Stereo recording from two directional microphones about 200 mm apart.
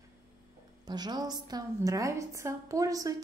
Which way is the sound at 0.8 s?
20° right (ahead or behind).